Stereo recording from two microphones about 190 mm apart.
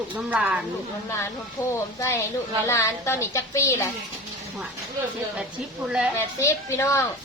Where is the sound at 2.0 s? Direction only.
15° left (ahead or behind).